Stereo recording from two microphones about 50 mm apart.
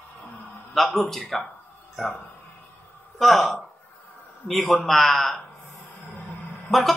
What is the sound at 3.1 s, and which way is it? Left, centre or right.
Speech, centre.